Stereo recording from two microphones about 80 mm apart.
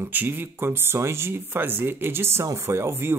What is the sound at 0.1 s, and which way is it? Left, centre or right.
Speech, right.